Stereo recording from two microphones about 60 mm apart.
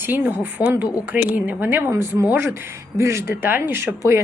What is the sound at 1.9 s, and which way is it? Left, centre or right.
Speech, right.